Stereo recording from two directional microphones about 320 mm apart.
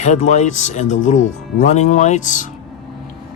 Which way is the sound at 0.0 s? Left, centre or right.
Left.